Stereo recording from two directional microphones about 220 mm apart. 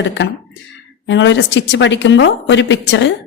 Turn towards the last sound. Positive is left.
turn(degrees=55)  # may be behind; listen again after turning